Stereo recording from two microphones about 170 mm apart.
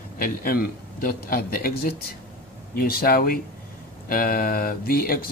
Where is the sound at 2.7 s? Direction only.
60° left (ahead or behind).